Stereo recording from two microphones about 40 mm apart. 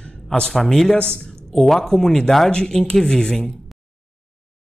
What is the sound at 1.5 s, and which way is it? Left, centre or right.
Speech, centre.